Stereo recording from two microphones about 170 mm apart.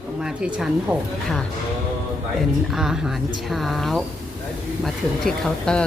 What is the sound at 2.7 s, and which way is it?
Speech, 5° right (ahead or behind).